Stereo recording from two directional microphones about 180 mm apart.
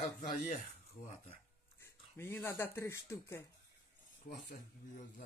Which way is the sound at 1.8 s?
15° left (ahead or behind).